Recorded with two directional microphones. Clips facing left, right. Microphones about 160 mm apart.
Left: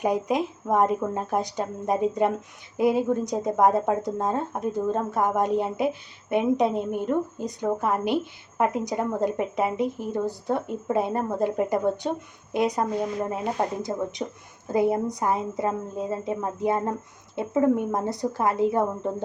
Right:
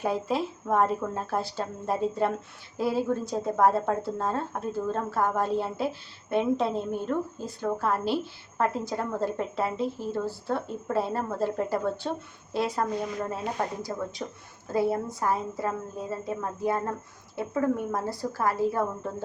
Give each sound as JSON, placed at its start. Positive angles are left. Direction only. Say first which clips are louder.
{"t": 0.0, "sound": "a woman's voice", "louder": "left 4 dB", "side_deg": 15}